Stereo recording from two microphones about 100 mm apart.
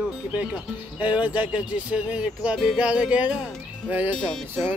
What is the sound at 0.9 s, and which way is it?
Speech, 15° right (ahead or behind).